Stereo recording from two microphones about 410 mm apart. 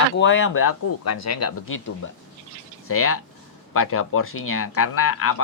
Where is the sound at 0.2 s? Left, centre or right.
Left.